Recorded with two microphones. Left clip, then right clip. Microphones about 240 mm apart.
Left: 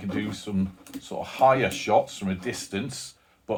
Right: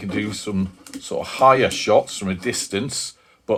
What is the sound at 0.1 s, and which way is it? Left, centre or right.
Speech, right.